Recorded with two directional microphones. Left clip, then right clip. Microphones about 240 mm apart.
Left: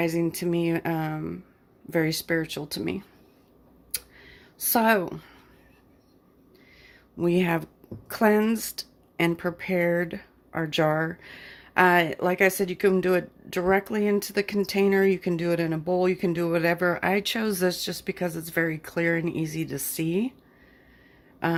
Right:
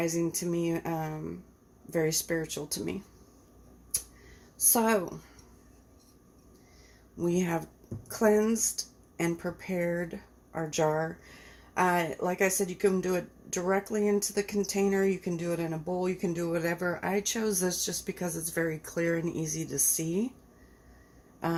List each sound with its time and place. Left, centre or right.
0.0 s speech: left
4.7 s speech: left
7.2 s speech: left
21.4 s speech: left